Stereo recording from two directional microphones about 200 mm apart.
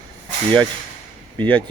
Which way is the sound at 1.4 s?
5° left (ahead or behind).